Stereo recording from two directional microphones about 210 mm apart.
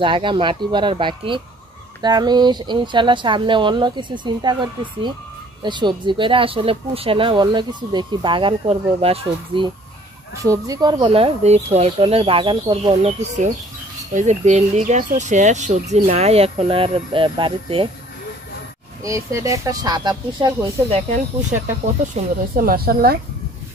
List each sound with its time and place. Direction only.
0.0 s speech: 25° right (ahead or behind)
10.4 s speech: 15° right (ahead or behind)
14.1 s speech: 35° right (ahead or behind)
19.0 s speech: 15° right (ahead or behind)
22.1 s speech: 45° right (ahead or behind)